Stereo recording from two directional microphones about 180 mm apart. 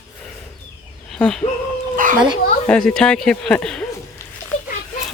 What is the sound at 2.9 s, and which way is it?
Speech, 5° left (ahead or behind).